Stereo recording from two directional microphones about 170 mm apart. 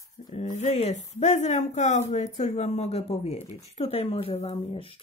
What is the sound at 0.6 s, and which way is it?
A woman's voice, 40° left (ahead or behind).